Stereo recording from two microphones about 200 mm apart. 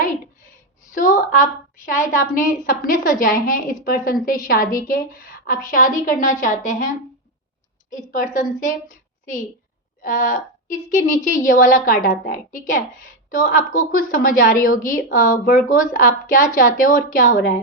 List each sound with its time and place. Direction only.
0.9 s a woman's voice: 40° left (ahead or behind)
10.0 s a woman's voice: 40° left (ahead or behind)